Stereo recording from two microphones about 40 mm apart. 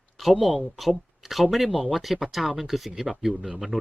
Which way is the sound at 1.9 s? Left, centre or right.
Centre.